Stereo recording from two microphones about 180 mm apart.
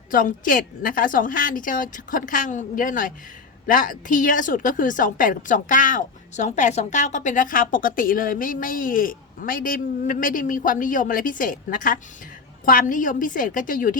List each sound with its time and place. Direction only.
0.1 s a woman's voice: 50° left (ahead or behind)